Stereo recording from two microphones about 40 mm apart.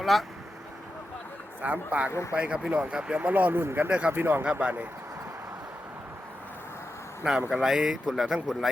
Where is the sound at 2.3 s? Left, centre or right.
Right.